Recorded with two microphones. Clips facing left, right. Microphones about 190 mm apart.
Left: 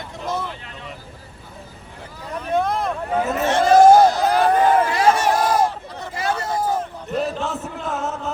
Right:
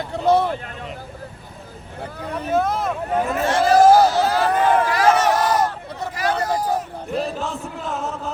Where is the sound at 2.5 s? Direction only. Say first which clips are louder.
Even; centre (ahead or behind).